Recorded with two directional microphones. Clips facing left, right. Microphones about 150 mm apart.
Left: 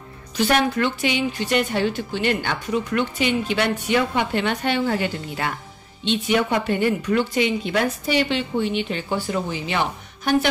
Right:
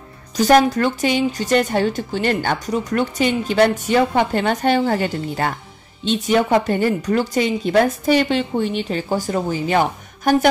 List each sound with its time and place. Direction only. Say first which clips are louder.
0.4 s speech: right 6 dB; 40° right (ahead or behind)